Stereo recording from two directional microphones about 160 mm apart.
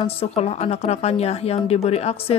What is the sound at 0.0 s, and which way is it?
Speech, 40° left (ahead or behind).